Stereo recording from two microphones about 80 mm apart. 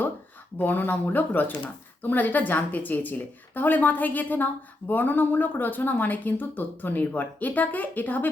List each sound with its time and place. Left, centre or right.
0.6 s speech: left